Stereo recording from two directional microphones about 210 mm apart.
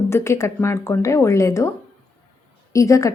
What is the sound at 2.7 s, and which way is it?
Speech, 15° left (ahead or behind).